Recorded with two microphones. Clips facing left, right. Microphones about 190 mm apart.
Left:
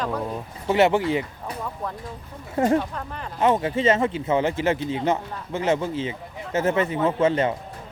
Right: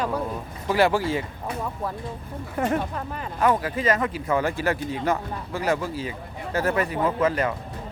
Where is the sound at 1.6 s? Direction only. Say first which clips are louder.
Even; 5° right (ahead or behind).